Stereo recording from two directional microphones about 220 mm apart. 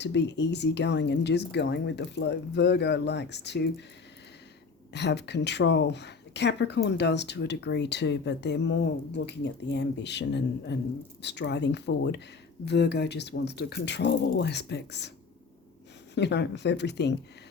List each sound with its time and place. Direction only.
0.0 s speech: 50° left (ahead or behind)
4.9 s speech: 50° left (ahead or behind)
16.1 s speech: 50° left (ahead or behind)